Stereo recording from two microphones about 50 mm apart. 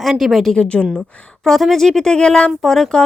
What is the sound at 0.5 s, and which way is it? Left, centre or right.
Speech, centre.